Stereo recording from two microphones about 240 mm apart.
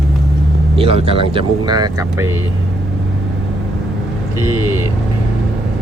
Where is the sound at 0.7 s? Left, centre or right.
Right.